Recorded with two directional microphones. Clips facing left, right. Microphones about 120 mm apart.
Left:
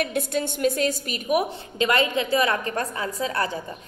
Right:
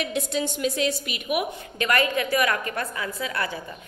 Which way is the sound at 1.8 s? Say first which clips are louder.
Left 2 dB; 25° left (ahead or behind).